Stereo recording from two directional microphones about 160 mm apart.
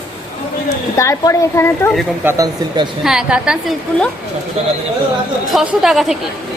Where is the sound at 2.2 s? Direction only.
15° right (ahead or behind).